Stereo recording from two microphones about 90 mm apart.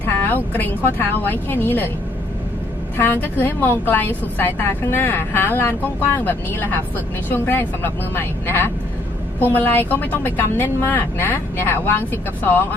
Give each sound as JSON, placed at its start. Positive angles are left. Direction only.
{"t": 0.0, "sound": "a woman's voice", "side_deg": 20}
{"t": 3.0, "sound": "a woman's voice", "side_deg": 20}